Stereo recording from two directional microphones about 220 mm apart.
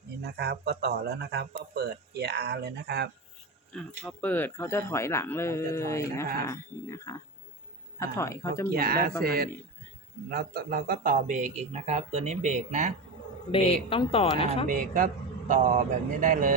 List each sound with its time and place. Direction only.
0.2 s speech: 45° right (ahead or behind)
3.7 s speech: 5° left (ahead or behind)
8.7 s speech: 40° right (ahead or behind)
13.5 s speech: 25° left (ahead or behind)
14.7 s a man's voice: 40° right (ahead or behind)